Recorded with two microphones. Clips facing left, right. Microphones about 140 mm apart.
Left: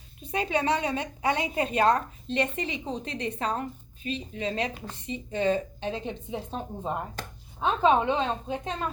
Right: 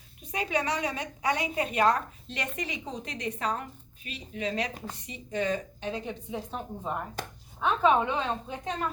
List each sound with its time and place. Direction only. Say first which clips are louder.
0.2 s a woman's voice: left 3 dB; 30° left (ahead or behind)